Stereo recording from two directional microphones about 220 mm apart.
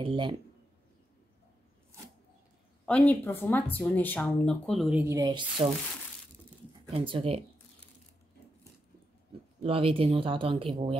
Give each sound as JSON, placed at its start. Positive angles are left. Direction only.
{"t": 0.0, "sound": "speech", "side_deg": -25}
{"t": 2.8, "sound": "speech", "side_deg": 5}
{"t": 6.9, "sound": "speech", "side_deg": -25}
{"t": 9.6, "sound": "speech", "side_deg": -25}